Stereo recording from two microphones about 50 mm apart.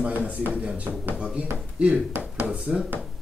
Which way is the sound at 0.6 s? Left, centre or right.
Right.